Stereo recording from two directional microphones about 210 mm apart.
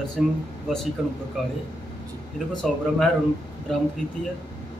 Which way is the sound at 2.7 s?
Centre (ahead or behind).